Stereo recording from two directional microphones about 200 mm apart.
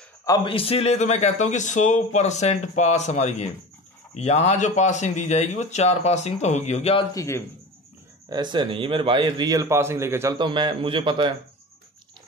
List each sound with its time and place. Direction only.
0.2 s speech: 20° left (ahead or behind)
7.2 s a man's voice: 15° left (ahead or behind)
8.3 s a man's voice: 20° right (ahead or behind)